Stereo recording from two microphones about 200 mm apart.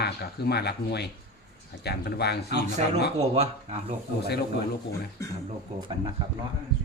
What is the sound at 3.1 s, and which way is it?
Speech, 30° right (ahead or behind).